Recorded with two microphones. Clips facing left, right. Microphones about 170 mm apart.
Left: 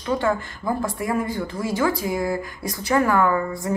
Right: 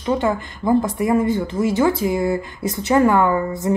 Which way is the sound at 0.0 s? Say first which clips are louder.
Right 3 dB; 20° right (ahead or behind).